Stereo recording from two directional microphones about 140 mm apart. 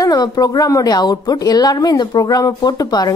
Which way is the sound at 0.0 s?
25° left (ahead or behind).